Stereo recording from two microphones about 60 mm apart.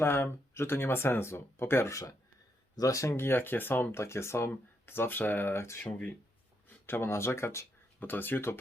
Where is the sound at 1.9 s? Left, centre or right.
Left.